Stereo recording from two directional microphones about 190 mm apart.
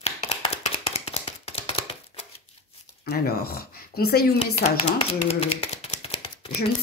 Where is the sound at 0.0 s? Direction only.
35° left (ahead or behind).